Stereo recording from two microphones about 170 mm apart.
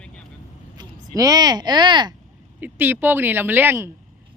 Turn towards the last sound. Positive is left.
turn(degrees=-15)  # may be behind; listen again after turning